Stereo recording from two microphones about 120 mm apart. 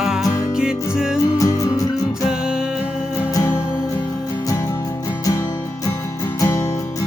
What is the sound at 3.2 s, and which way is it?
Music, 25° left (ahead or behind).